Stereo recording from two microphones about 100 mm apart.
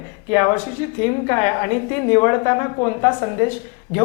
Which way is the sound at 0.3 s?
25° left (ahead or behind).